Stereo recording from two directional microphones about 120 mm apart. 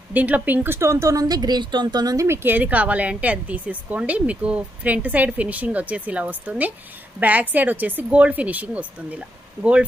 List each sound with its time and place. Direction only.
0.1 s speech: 15° right (ahead or behind)